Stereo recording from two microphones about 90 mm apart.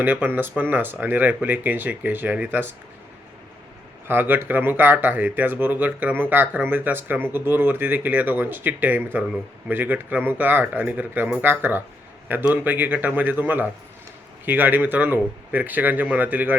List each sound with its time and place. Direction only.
0.0 s speech: 20° right (ahead or behind)
4.1 s speech: 25° right (ahead or behind)